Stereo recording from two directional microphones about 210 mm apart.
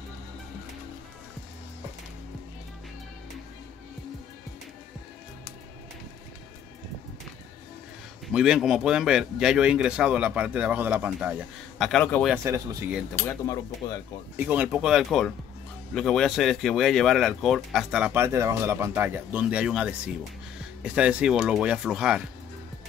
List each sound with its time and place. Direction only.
8.3 s speech: 5° right (ahead or behind)
12.3 s speech: 10° right (ahead or behind)
13.5 s speech: 15° left (ahead or behind)
14.3 s speech: 10° right (ahead or behind)